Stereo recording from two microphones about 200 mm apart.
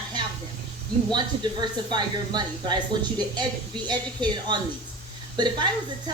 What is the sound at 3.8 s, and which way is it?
A woman's voice, 20° right (ahead or behind).